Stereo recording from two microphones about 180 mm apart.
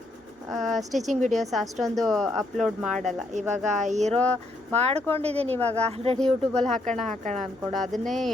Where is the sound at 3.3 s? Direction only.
40° right (ahead or behind).